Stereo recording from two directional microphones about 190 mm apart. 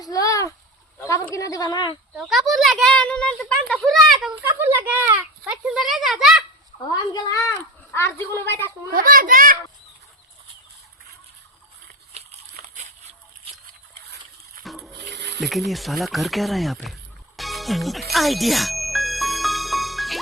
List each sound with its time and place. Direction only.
0.0 s a sound: 20° left (ahead or behind)
1.4 s a woman's voice: 20° left (ahead or behind)
2.1 s a child's voice: centre (ahead or behind)
4.6 s a child's voice: 10° right (ahead or behind)
6.9 s a woman's voice: 20° left (ahead or behind)
8.9 s a child's voice: 50° right (ahead or behind)
14.6 s a sound: centre (ahead or behind)
15.1 s snake: 65° right (ahead or behind)
15.4 s speech: centre (ahead or behind)
18.1 s music: centre (ahead or behind)